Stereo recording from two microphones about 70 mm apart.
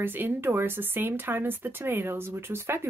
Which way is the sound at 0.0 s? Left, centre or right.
Right.